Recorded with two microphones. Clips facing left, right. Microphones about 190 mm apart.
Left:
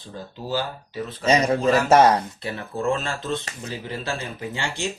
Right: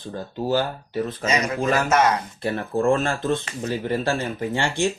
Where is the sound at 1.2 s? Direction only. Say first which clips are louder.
Left 6 dB; 30° left (ahead or behind).